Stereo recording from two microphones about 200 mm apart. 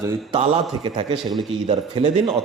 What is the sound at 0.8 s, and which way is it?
Speech, 25° right (ahead or behind).